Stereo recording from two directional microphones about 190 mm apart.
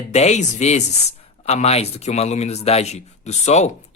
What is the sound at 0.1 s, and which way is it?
Speech, 35° left (ahead or behind).